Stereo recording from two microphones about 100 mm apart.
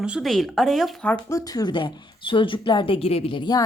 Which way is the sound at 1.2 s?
35° left (ahead or behind).